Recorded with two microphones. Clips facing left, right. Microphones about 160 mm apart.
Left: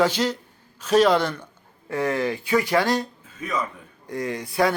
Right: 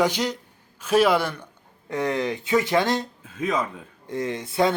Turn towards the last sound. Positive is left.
turn(degrees=-25)  # may be behind; listen again after turning